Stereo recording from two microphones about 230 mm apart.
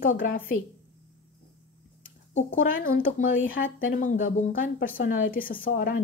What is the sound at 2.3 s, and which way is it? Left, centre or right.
Speech, left.